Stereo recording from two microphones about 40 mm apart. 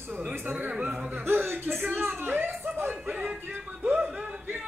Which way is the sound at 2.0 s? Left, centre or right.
Right.